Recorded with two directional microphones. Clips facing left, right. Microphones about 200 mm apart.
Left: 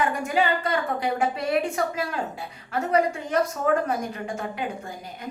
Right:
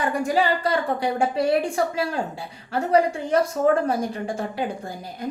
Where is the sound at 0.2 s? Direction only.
35° right (ahead or behind).